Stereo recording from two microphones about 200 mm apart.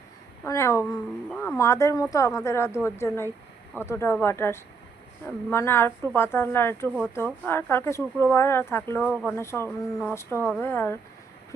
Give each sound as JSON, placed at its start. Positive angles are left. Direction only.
{"t": 0.4, "sound": "speech", "side_deg": 15}